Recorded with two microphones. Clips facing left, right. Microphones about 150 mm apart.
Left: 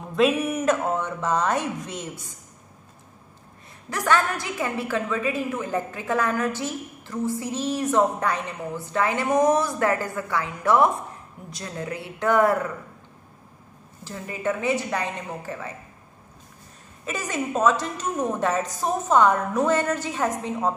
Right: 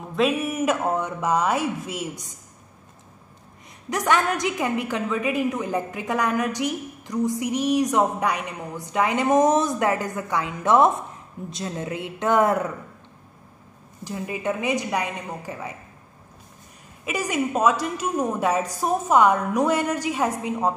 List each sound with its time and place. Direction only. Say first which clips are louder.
0.1 s a woman's voice: left 2 dB; centre (ahead or behind)
3.9 s a woman's voice: right 1 dB; 20° right (ahead or behind)
14.0 s a woman's voice: right 1 dB; 15° right (ahead or behind)
17.0 s a woman's voice: right 3 dB; 10° right (ahead or behind)